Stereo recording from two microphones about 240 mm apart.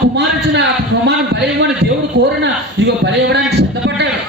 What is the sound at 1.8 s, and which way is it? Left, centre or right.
Speech, right.